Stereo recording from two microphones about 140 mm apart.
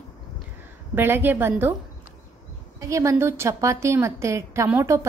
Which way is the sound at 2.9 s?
20° right (ahead or behind).